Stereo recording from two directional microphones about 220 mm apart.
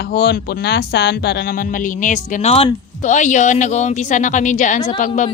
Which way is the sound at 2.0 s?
30° left (ahead or behind).